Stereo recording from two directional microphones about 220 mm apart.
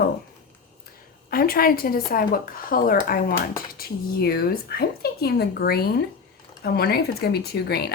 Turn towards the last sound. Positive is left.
turn(degrees=45)  # may be behind; listen again after turning